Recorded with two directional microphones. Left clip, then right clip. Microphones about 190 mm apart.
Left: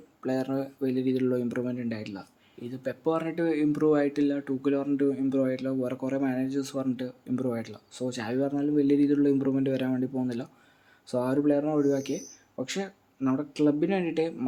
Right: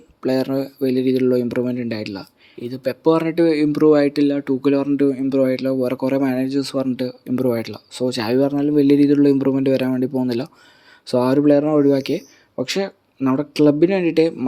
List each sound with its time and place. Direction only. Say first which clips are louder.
0.2 s speech: right 10 dB; 35° right (ahead or behind)